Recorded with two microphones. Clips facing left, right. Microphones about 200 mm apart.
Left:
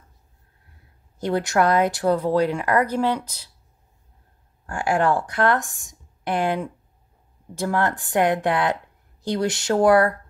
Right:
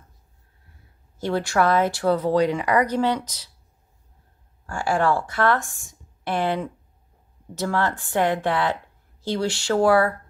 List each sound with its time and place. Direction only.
1.2 s speech: 20° left (ahead or behind)
4.6 s speech: 15° left (ahead or behind)